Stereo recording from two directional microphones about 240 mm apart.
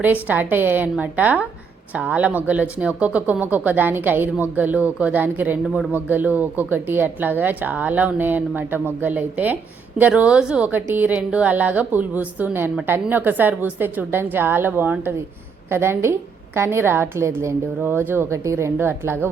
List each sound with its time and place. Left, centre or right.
0.0 s speech: centre